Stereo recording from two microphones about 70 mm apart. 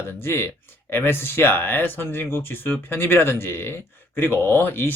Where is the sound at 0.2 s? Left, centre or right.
Left.